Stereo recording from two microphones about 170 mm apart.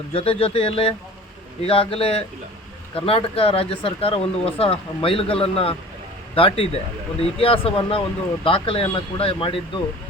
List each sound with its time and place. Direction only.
0.1 s speech: 35° left (ahead or behind)